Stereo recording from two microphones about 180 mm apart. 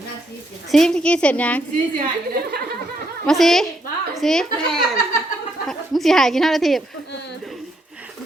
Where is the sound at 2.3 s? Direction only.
60° right (ahead or behind).